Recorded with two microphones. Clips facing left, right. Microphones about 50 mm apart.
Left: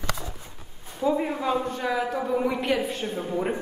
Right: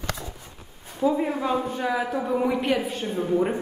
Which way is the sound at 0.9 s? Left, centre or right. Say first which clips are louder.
Right 2 dB; centre.